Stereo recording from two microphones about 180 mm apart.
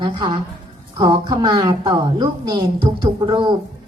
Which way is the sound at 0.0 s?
25° right (ahead or behind).